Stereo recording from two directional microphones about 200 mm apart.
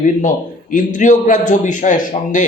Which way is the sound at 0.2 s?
40° left (ahead or behind).